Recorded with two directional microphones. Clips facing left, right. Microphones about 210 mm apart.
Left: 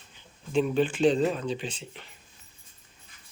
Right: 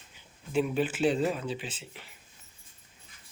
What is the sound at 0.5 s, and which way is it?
Speech, 5° right (ahead or behind).